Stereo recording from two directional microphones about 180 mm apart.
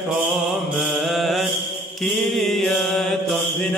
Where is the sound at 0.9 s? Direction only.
Centre (ahead or behind).